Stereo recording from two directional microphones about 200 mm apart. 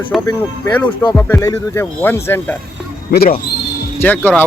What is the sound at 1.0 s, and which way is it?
Speech, 15° left (ahead or behind).